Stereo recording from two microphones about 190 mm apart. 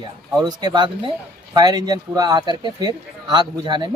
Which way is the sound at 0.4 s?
20° right (ahead or behind).